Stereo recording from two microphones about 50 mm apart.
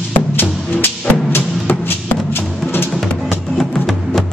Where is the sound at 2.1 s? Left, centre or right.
Left.